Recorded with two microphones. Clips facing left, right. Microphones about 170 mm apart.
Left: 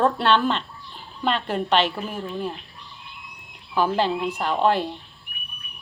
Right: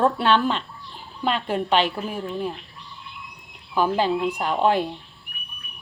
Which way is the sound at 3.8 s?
10° right (ahead or behind).